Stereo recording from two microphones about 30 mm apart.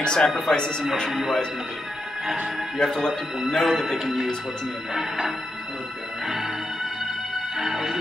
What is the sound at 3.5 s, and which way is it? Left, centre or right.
Speech, centre.